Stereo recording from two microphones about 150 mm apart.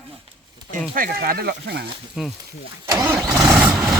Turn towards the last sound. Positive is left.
turn(degrees=-10)  # may be behind; listen again after turning